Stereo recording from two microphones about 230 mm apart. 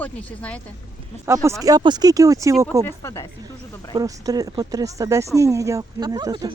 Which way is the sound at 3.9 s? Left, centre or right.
Centre.